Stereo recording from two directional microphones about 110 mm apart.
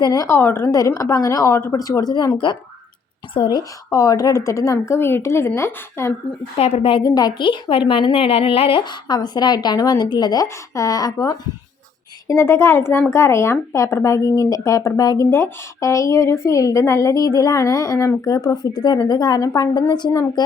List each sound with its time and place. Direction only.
0.0 s a woman's voice: 35° left (ahead or behind)
3.9 s speech: 35° left (ahead or behind)
6.6 s a woman's voice: 70° left (ahead or behind)
7.0 s a woman's voice: 35° left (ahead or behind)